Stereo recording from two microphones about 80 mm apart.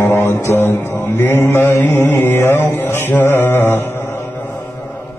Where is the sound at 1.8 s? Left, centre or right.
Left.